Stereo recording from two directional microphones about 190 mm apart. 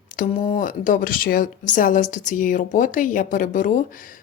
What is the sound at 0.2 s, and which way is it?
A woman's voice, 45° left (ahead or behind).